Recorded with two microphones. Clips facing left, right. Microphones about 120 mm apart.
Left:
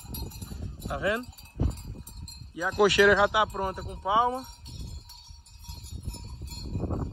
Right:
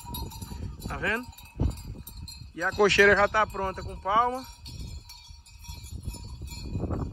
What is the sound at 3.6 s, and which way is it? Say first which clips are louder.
Speech: even; 20° left (ahead or behind).